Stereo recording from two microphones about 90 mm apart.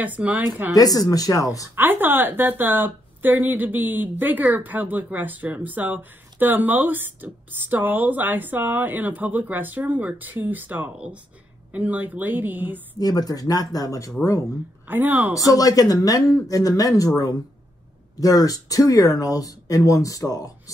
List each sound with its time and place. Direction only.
0.0 s speech: 15° right (ahead or behind)
0.7 s speech: 45° left (ahead or behind)
1.8 s a woman's voice: 20° right (ahead or behind)
13.0 s speech: 45° left (ahead or behind)
14.9 s a woman's voice: 20° right (ahead or behind)
15.3 s speech: 40° left (ahead or behind)
18.2 s speech: 40° left (ahead or behind)